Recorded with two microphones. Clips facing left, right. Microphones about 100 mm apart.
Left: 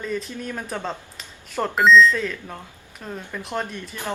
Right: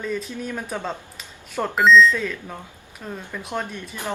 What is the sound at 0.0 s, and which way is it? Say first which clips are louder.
A woman's voice: right 1 dB; centre (ahead or behind).